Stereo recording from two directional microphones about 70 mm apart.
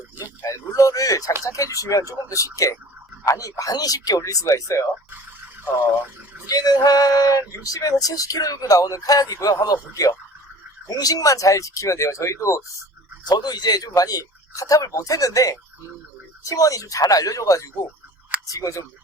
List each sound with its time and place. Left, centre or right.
0.2 s a sound: left
1.5 s speech: left
6.5 s speech: left
10.8 s speech: left
13.2 s speech: left